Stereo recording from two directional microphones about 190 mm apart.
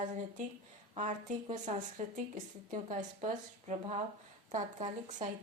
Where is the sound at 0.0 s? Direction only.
40° right (ahead or behind).